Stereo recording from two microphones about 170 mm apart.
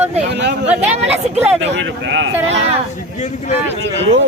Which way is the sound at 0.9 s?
40° right (ahead or behind).